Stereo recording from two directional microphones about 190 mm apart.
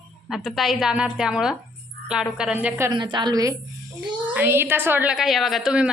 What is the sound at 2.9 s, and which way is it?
Speech, 25° right (ahead or behind).